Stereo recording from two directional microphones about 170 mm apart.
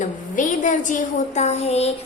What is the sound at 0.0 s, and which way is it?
A woman's voice, 45° left (ahead or behind).